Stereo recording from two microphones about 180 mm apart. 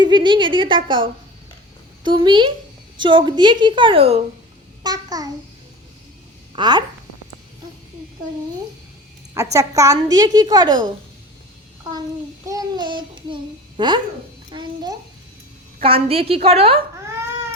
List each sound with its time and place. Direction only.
0.0 s speech: 25° right (ahead or behind)
4.8 s a child's voice: 20° right (ahead or behind)
6.6 s speech: 25° right (ahead or behind)
9.3 s speech: 15° right (ahead or behind)
12.5 s babbling: 20° right (ahead or behind)
14.5 s a sound: 25° right (ahead or behind)
15.8 s a woman's voice: 35° right (ahead or behind)